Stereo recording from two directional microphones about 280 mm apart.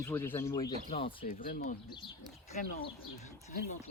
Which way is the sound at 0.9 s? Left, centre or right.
Left.